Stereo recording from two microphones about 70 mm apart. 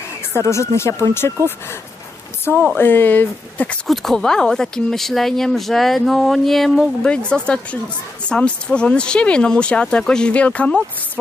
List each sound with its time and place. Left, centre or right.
0.4 s speech: left
2.5 s speech: left
3.8 s speech: centre
7.1 s speech: centre